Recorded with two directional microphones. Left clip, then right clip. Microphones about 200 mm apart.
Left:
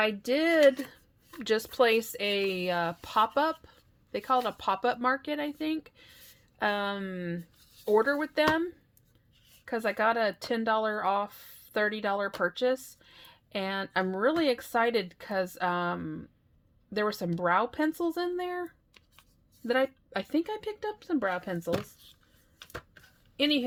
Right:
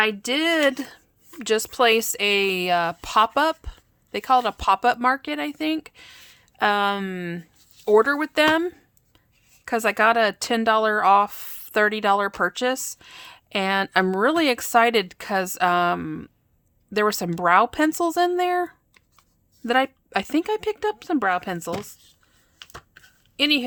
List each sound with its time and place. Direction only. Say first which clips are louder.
0.0 s speech: right 5 dB; 30° right (ahead or behind)
22.5 s a sound: right 2 dB; 30° right (ahead or behind)
23.4 s a woman's voice: right 7 dB; 20° right (ahead or behind)